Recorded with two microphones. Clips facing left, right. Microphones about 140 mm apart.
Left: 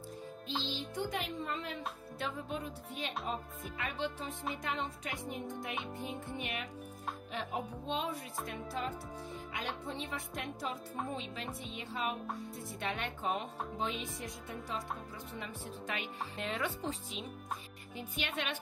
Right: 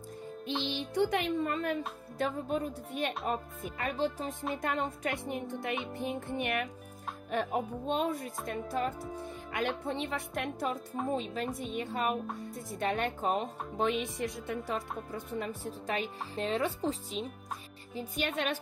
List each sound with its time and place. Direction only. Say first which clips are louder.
0.7 s speech: right 12 dB; 70° right (ahead or behind); by 1.8 s 55° right (ahead or behind)
2.1 s speech: right 8 dB; 45° right (ahead or behind)
3.3 s speech: right 5 dB; 40° right (ahead or behind)
5.3 s speech: right 5 dB; 70° right (ahead or behind)
6.0 s speech: right 7 dB; 60° right (ahead or behind)
9.5 s speech: right 9 dB; 65° right (ahead or behind)
11.1 s speech: right 8 dB; 40° right (ahead or behind)
13.7 s speech: right 9 dB; 70° right (ahead or behind)
15.1 s speech: right 8 dB; 45° right (ahead or behind)